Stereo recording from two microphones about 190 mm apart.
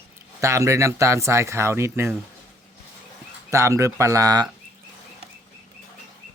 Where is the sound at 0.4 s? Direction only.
15° right (ahead or behind).